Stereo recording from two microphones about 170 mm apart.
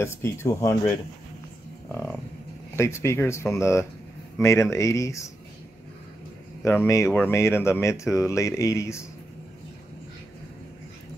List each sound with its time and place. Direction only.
0.0 s speech: 15° left (ahead or behind)
1.9 s livestock: 10° left (ahead or behind)
2.7 s speech: 15° left (ahead or behind)
6.6 s speech: 15° left (ahead or behind)